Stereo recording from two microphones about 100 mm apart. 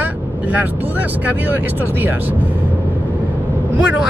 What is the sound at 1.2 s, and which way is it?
Speech, 20° right (ahead or behind).